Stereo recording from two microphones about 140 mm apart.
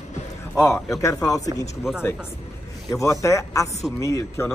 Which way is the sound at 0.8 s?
20° left (ahead or behind).